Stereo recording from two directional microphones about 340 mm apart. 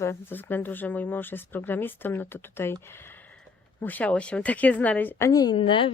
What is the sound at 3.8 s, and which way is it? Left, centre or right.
A woman's voice, centre.